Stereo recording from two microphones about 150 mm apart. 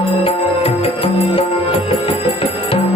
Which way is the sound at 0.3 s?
40° left (ahead or behind).